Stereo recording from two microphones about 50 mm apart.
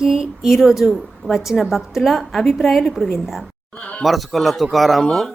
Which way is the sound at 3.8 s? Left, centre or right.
Left.